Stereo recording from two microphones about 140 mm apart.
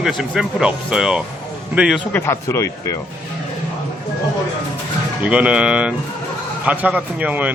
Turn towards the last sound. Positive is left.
turn(degrees=-10)  # may be behind; listen again after turning